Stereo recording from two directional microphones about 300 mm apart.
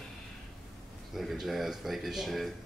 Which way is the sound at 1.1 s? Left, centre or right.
Centre.